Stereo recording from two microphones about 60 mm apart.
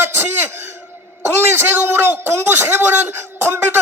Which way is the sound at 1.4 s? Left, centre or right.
Right.